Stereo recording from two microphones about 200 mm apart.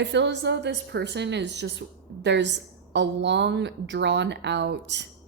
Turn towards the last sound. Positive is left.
turn(degrees=-60)  # may be behind; listen again after turning